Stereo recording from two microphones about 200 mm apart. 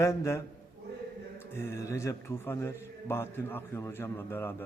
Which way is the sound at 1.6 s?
15° left (ahead or behind).